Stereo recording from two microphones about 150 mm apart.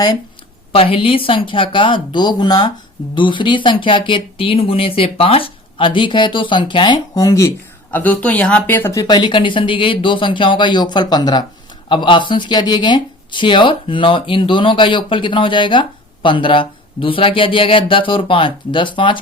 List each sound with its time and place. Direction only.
0.7 s speech: 40° left (ahead or behind); by 7.5 s 20° left (ahead or behind)
7.9 s speech: 10° left (ahead or behind); by 19.2 s 35° left (ahead or behind)